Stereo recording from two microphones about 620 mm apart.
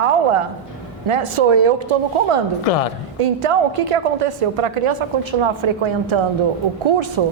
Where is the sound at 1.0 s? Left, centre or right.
Right.